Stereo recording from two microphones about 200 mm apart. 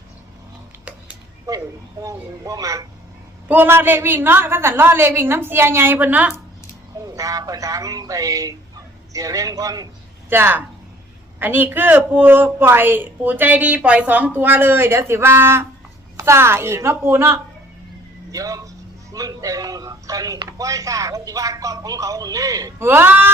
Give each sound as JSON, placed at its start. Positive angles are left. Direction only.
{"t": 1.5, "sound": "a woman's voice", "side_deg": -15}